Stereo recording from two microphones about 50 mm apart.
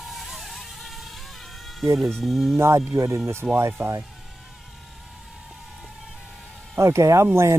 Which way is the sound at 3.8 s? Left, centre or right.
Right.